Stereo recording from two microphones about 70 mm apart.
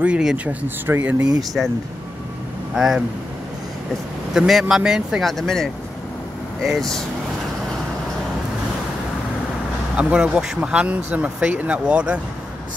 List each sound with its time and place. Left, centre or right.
0.0 s speech: centre
2.7 s speech: centre
4.3 s speech: centre
9.9 s speech: centre